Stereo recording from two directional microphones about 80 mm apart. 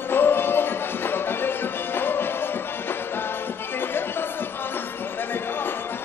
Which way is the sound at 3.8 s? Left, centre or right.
Left.